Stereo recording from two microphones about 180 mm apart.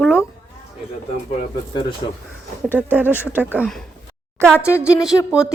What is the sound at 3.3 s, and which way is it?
Speech, 10° right (ahead or behind).